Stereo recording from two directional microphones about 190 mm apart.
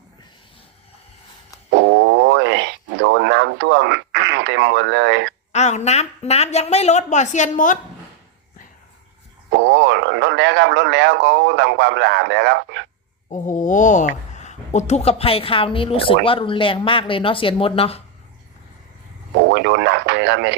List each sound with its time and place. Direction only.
1.7 s a sound: 70° right (ahead or behind)
5.5 s speech: 35° left (ahead or behind)
9.5 s speech: 70° right (ahead or behind)
13.3 s speech: 40° left (ahead or behind)
19.5 s speech: 65° right (ahead or behind)